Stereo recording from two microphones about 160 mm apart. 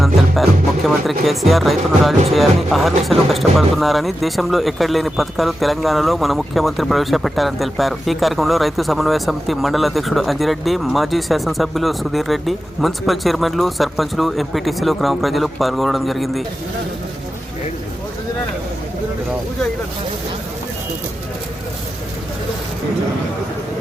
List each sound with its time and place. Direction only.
1.0 s speech: centre (ahead or behind)